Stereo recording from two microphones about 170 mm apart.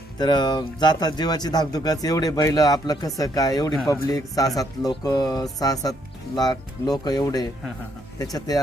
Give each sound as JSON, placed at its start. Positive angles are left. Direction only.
{"t": 0.2, "sound": "speech", "side_deg": 25}